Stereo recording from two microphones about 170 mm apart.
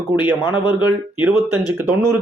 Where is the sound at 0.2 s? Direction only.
10° right (ahead or behind).